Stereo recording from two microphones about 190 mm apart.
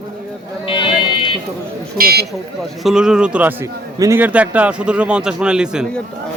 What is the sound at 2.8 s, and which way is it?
A man's voice, centre (ahead or behind).